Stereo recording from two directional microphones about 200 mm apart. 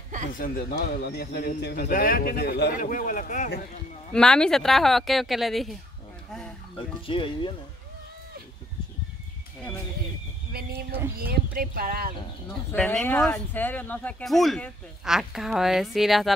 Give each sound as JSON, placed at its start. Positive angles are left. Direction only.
{"t": 0.3, "sound": "a man's voice", "side_deg": 45}
{"t": 4.1, "sound": "speech", "side_deg": 5}
{"t": 7.1, "sound": "speech", "side_deg": 25}
{"t": 11.5, "sound": "speech", "side_deg": -45}
{"t": 12.7, "sound": "speech", "side_deg": 5}